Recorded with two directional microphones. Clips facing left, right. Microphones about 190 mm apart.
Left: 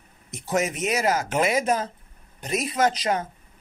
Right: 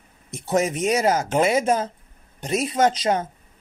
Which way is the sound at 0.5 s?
30° right (ahead or behind).